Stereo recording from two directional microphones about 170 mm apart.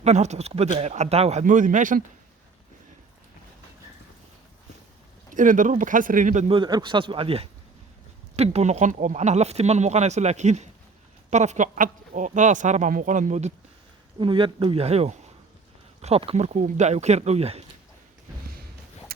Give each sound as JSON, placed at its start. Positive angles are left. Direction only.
{"t": 0.0, "sound": "speech", "side_deg": -40}
{"t": 5.3, "sound": "speech", "side_deg": -50}
{"t": 6.5, "sound": "speech", "side_deg": -25}
{"t": 14.2, "sound": "speech", "side_deg": -30}